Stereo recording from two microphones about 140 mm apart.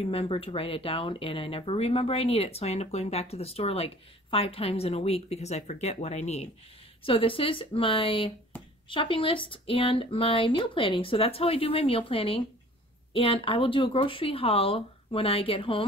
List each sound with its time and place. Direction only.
0.0 s speech: 45° left (ahead or behind)
7.0 s speech: 40° left (ahead or behind)